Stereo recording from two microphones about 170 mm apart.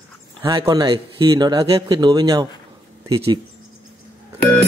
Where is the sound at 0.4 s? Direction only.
25° right (ahead or behind).